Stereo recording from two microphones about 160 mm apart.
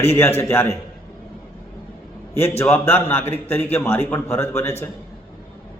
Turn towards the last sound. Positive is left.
turn(degrees=15)  # may be behind; listen again after turning